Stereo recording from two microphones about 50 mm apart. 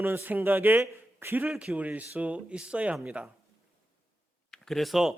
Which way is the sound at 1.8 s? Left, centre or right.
Right.